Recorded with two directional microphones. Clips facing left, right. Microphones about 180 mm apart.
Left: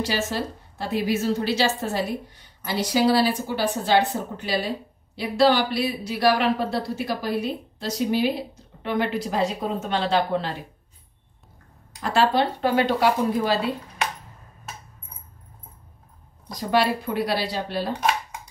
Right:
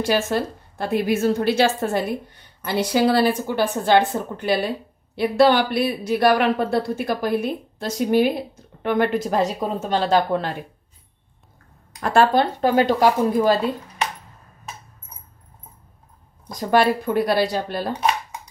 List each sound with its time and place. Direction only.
0.0 s a woman's voice: 55° right (ahead or behind)
12.0 s a woman's voice: 50° right (ahead or behind)
16.5 s a woman's voice: 50° right (ahead or behind)